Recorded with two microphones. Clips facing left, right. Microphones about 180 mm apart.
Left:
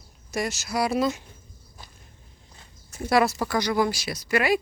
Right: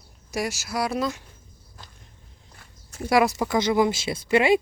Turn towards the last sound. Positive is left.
turn(degrees=-25)  # may be behind; listen again after turning